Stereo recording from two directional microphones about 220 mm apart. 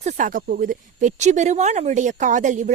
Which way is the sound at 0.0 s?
35° right (ahead or behind).